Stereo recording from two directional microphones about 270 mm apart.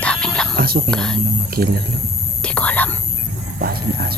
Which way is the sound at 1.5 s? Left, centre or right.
Right.